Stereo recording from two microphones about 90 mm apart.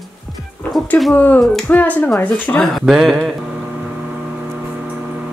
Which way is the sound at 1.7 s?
20° left (ahead or behind).